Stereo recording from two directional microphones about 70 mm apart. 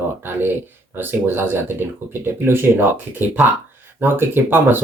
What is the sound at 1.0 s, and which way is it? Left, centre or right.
Speech, right.